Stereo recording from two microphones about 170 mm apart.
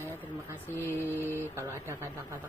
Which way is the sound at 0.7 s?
15° left (ahead or behind).